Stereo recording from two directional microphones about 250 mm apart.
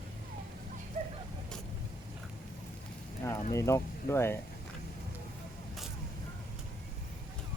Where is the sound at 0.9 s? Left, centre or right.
Right.